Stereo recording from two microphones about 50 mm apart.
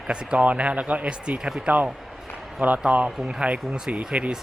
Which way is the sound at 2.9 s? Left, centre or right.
Right.